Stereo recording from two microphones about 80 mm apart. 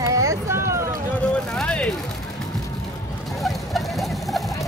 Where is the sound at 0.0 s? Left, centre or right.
Right.